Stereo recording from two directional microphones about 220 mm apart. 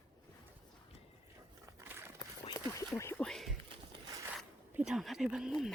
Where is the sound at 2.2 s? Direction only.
15° left (ahead or behind).